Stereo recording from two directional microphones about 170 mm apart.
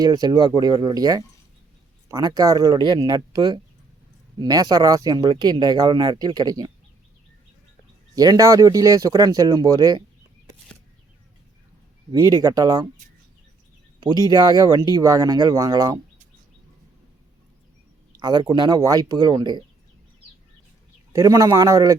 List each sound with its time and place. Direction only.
0.0 s speech: 25° right (ahead or behind)
8.1 s speech: 20° right (ahead or behind)
12.1 s speech: 20° right (ahead or behind)
14.0 s speech: 25° right (ahead or behind)
18.2 s speech: 25° right (ahead or behind)
21.1 s speech: 20° right (ahead or behind)